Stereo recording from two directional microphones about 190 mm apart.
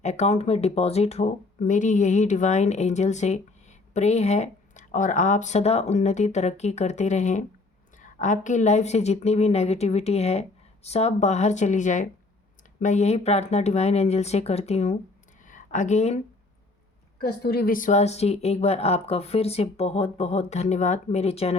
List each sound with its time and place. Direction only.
0.0 s speech: 35° left (ahead or behind)
15.4 s a sound: 40° left (ahead or behind)
17.2 s speech: 55° left (ahead or behind); by 21.5 s 35° left (ahead or behind)